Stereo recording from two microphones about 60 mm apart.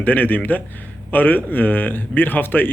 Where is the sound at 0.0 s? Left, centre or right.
Left.